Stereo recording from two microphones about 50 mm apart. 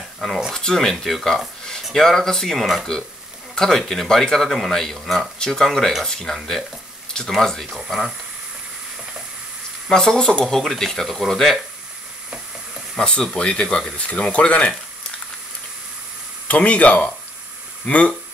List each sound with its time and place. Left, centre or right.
0.5 s speech: centre
7.8 s speech: centre
9.8 s speech: centre
13.0 s speech: centre
16.4 s speech: left